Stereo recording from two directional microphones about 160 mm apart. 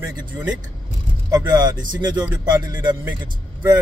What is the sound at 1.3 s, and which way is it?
Speech, 25° right (ahead or behind).